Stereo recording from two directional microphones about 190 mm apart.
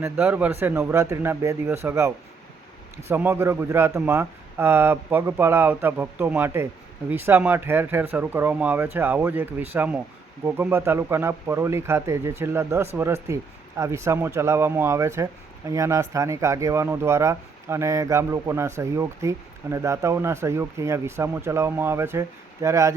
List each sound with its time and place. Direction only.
0.0 s speech: 10° right (ahead or behind)